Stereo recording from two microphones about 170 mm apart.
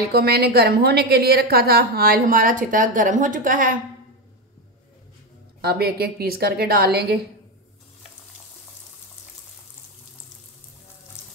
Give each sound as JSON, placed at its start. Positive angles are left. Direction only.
{"t": 0.0, "sound": "a woman's voice", "side_deg": -70}
{"t": 5.6, "sound": "a woman's voice", "side_deg": -70}